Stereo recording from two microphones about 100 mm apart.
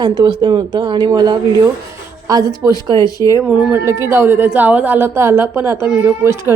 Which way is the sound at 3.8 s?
25° right (ahead or behind).